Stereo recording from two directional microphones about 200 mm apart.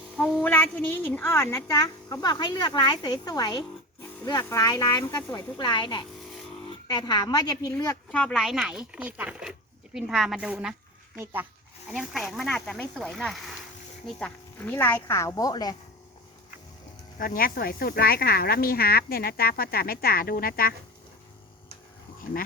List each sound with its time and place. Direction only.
0.2 s a woman's voice: centre (ahead or behind)
8.1 s a woman's voice: 5° left (ahead or behind); by 15.7 s 20° left (ahead or behind)
17.2 s speech: 45° left (ahead or behind)